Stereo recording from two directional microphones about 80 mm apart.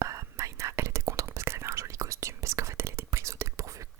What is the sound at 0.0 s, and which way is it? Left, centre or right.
Whispering, right.